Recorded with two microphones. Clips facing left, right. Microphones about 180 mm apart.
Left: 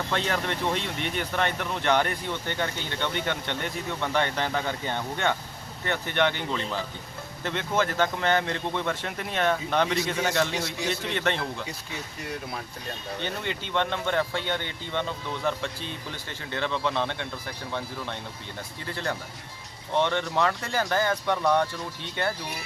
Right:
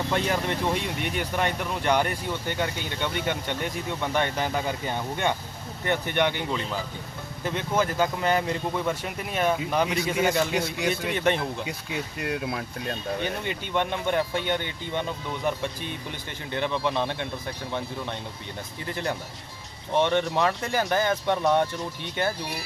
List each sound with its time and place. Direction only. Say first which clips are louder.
0.1 s speech: right 2 dB; 15° right (ahead or behind)
10.6 s speech: right 3 dB; 55° right (ahead or behind)
11.0 s speech: right 4 dB; 15° right (ahead or behind)
12.2 s speech: right 5 dB; 65° right (ahead or behind)
13.2 s speech: right 2 dB; 15° right (ahead or behind)